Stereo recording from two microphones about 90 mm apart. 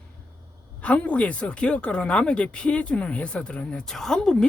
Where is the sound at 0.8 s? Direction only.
15° left (ahead or behind).